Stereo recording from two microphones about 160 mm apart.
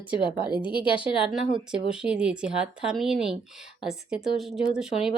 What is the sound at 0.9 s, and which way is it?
A woman's voice, 5° right (ahead or behind).